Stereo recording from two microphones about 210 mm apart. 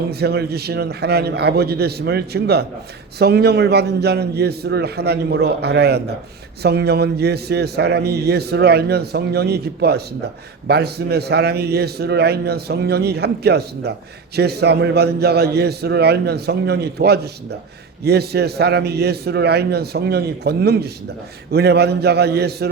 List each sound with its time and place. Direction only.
0.1 s a man's voice: 50° right (ahead or behind)